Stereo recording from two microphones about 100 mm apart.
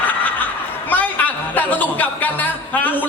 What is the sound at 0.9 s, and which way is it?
Speech, 15° left (ahead or behind).